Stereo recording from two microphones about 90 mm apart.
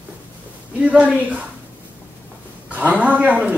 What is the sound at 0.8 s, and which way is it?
Speech, 15° right (ahead or behind).